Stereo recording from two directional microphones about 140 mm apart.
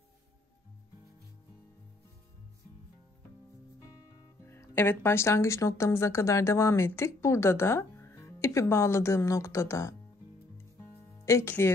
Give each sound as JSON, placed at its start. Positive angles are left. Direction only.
{"t": 4.5, "sound": "speech", "side_deg": 15}
{"t": 11.2, "sound": "speech", "side_deg": 20}